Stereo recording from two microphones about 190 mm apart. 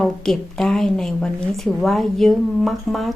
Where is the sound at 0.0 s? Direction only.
Centre (ahead or behind).